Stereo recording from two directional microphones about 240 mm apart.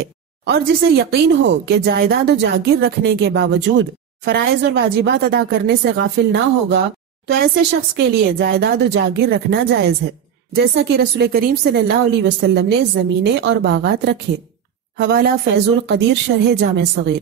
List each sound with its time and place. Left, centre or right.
0.0 s speech: right
7.9 s speech: right